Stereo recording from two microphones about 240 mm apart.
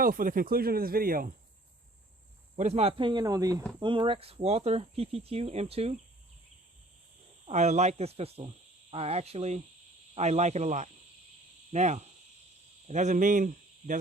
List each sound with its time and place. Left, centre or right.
0.0 s speech: right
2.6 s speech: right
7.4 s speech: right